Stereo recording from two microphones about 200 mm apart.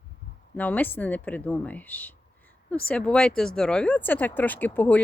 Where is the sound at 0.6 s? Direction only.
10° left (ahead or behind).